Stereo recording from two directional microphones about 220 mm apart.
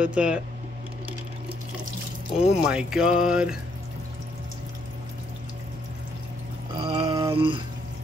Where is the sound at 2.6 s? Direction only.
5° right (ahead or behind).